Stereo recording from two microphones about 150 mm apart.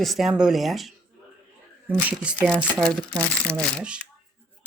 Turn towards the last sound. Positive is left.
turn(degrees=-5)  # may be behind; listen again after turning